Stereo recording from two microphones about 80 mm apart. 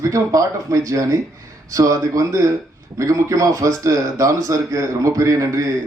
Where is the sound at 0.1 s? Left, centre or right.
Right.